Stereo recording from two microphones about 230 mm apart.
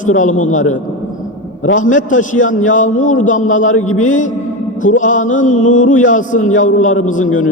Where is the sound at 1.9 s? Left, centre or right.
Left.